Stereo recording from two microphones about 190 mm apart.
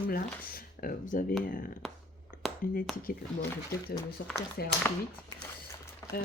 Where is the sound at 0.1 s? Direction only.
50° left (ahead or behind).